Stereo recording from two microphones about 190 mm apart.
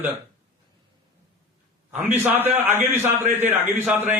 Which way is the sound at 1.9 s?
10° right (ahead or behind).